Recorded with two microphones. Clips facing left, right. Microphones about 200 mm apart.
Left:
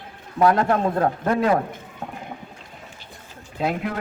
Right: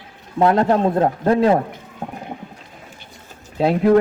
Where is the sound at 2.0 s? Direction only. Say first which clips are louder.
Right 4 dB; 35° right (ahead or behind).